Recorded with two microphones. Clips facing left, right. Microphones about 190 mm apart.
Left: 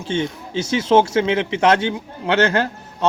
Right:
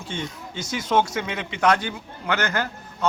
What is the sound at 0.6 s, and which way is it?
A man's voice, 25° left (ahead or behind).